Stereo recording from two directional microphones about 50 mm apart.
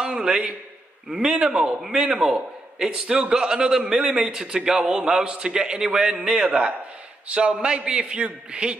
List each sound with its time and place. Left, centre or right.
0.0 s a man's voice: centre